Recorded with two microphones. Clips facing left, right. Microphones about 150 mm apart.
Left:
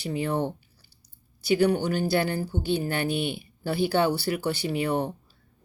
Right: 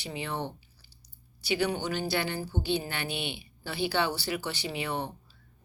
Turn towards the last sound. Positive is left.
turn(degrees=50)  # may be behind; listen again after turning